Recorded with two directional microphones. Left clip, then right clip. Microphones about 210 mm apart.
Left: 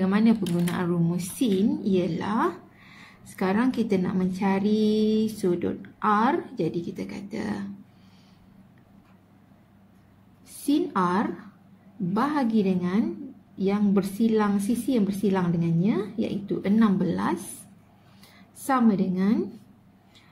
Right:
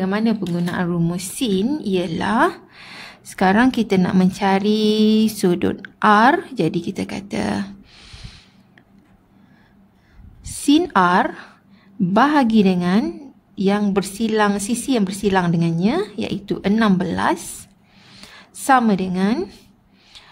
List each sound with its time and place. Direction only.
0.0 s a woman's voice: 40° right (ahead or behind)
10.7 s a woman's voice: 55° right (ahead or behind)